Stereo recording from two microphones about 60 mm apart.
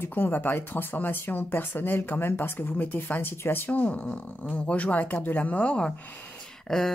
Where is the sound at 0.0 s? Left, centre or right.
Left.